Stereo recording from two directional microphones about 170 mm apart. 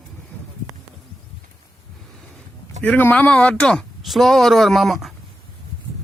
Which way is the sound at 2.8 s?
10° left (ahead or behind).